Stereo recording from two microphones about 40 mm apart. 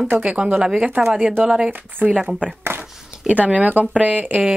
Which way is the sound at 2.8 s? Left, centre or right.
Right.